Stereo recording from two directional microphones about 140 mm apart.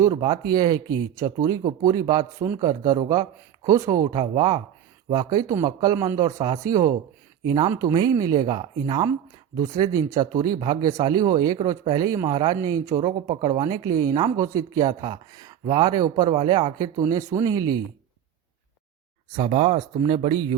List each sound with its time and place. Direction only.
0.2 s speech: 30° right (ahead or behind)
12.3 s speech: 40° right (ahead or behind)
19.4 s speech: 45° right (ahead or behind)